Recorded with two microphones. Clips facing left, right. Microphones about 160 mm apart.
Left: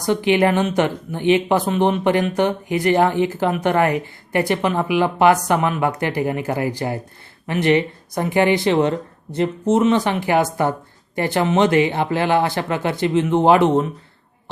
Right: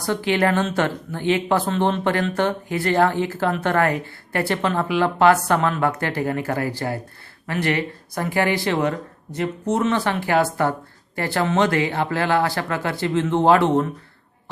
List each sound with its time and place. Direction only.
0.0 s speech: 20° left (ahead or behind)